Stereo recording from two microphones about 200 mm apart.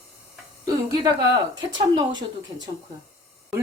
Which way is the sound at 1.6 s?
20° right (ahead or behind).